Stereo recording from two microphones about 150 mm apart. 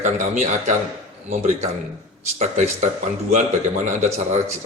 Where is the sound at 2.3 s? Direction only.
50° right (ahead or behind).